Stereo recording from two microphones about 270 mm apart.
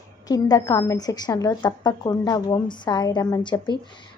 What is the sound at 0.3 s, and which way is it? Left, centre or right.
A woman's voice, centre.